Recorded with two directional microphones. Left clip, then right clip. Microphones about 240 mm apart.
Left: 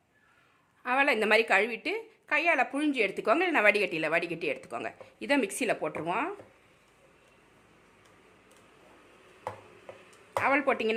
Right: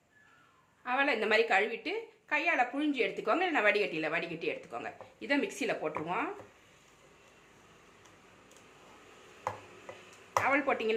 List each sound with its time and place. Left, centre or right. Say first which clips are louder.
0.8 s a woman's voice: left 4 dB; left
10.4 s speech: left 4 dB; left